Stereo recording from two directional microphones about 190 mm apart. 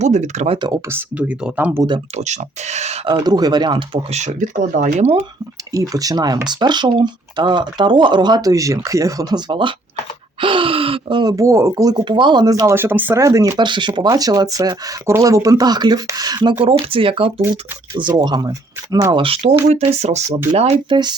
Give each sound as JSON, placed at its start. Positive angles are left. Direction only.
{"t": 0.0, "sound": "speech", "side_deg": -40}
{"t": 0.9, "sound": "speech", "side_deg": -10}
{"t": 2.1, "sound": "speech", "side_deg": -35}
{"t": 3.2, "sound": "speech", "side_deg": -20}
{"t": 5.7, "sound": "speech", "side_deg": -20}